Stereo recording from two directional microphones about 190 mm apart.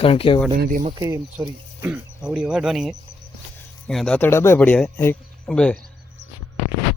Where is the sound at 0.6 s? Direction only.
45° right (ahead or behind).